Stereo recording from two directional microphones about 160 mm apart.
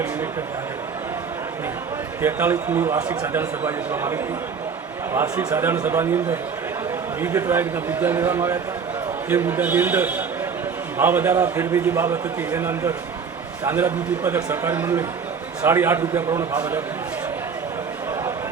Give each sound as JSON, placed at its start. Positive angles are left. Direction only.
{"t": 2.2, "sound": "a man's voice", "side_deg": -15}